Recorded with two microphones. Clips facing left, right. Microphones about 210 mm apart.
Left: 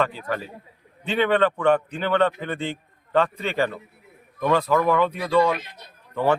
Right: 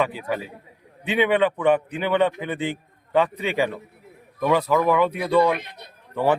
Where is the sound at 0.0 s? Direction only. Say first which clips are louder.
Right 1 dB; 10° right (ahead or behind).